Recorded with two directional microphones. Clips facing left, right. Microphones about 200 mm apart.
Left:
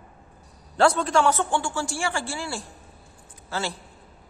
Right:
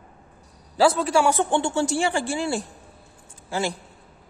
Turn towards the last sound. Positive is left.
turn(degrees=-15)  # may be behind; listen again after turning